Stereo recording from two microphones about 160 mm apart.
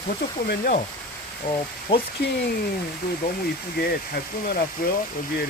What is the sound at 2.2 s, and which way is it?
Speech, 90° left.